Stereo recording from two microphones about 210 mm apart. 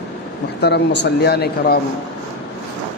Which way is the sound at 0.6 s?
55° left (ahead or behind).